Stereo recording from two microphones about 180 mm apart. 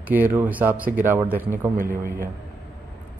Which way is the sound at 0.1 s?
10° right (ahead or behind).